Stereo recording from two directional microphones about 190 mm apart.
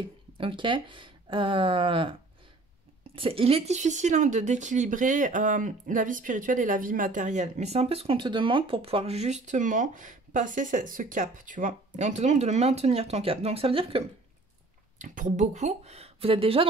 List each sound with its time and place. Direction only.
0.4 s speech: 25° right (ahead or behind)
15.0 s speech: 40° right (ahead or behind)